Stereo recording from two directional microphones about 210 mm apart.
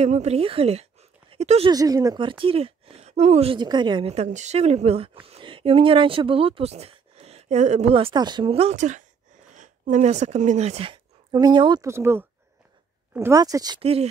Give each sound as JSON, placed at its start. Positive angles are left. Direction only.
{"t": 0.0, "sound": "a woman's voice", "side_deg": -30}
{"t": 1.7, "sound": "a woman's voice", "side_deg": -15}